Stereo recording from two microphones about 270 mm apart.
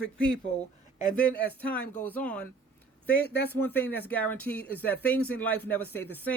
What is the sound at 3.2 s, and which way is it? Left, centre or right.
Speech, left.